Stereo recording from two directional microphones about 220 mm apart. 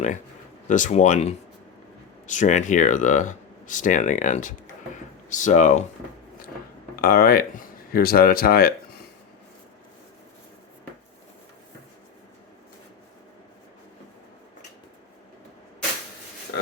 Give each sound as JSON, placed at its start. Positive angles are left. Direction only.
{"t": 0.7, "sound": "speech", "side_deg": 35}
{"t": 6.9, "sound": "speech", "side_deg": 40}